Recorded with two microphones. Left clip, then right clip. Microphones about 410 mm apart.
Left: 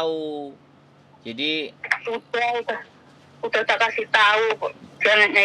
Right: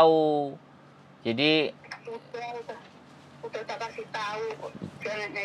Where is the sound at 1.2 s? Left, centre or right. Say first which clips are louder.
Right 2 dB; right.